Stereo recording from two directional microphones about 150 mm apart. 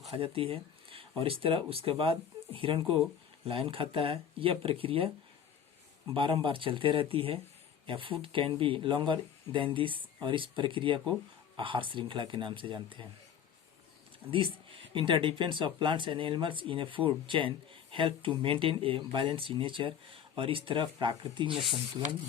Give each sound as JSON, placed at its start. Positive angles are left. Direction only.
{"t": 0.1, "sound": "speech", "side_deg": -40}
{"t": 6.1, "sound": "speech", "side_deg": -35}
{"t": 14.3, "sound": "speech", "side_deg": -35}
{"t": 21.5, "sound": "speech", "side_deg": 0}